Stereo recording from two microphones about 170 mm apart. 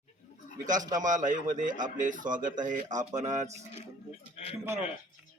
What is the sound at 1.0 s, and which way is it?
A man's voice, 50° right (ahead or behind).